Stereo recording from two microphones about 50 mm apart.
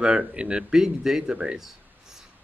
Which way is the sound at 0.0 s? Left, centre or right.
Centre.